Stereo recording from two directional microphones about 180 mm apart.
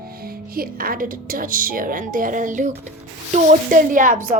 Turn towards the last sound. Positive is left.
turn(degrees=-45)  # may be behind; listen again after turning